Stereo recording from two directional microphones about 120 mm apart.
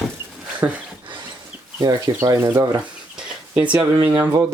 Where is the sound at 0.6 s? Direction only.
20° right (ahead or behind).